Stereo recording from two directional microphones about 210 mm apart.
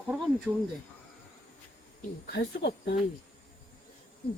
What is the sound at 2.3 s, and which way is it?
Speech, 50° left (ahead or behind).